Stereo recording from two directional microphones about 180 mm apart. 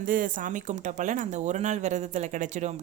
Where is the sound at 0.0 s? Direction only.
50° right (ahead or behind).